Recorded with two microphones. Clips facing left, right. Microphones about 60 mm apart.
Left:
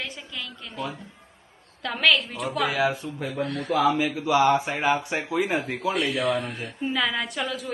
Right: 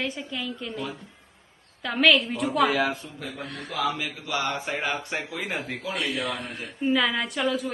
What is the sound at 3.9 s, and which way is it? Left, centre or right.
Speech, centre.